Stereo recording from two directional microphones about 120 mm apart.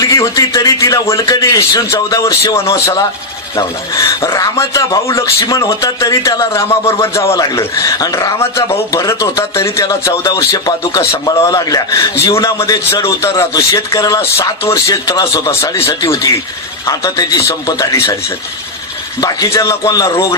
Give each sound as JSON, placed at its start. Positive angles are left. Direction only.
{"t": 0.0, "sound": "a man's voice", "side_deg": 30}
{"t": 19.2, "sound": "a man's voice", "side_deg": 30}